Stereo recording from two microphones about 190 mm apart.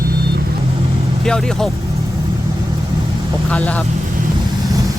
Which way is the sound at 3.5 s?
5° left (ahead or behind).